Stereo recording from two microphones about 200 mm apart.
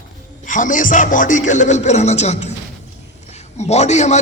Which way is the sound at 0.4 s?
40° left (ahead or behind).